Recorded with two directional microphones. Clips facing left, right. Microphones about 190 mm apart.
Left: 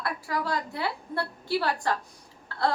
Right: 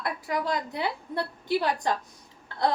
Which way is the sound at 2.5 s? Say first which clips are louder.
Right 1 dB; 20° right (ahead or behind).